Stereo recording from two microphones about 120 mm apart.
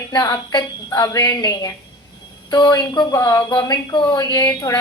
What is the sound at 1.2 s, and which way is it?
A woman's voice, 35° left (ahead or behind).